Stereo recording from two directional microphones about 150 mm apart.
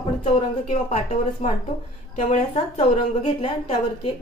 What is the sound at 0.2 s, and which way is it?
A woman's voice, 45° left (ahead or behind).